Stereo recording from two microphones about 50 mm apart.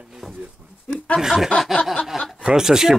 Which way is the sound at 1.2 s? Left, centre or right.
Centre.